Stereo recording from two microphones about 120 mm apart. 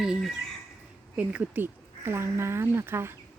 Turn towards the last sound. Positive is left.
turn(degrees=-20)  # may be behind; listen again after turning